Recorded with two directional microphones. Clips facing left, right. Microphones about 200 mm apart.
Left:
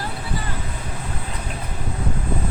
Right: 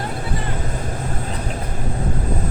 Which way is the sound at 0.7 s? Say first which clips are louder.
Right 5 dB; 45° right (ahead or behind).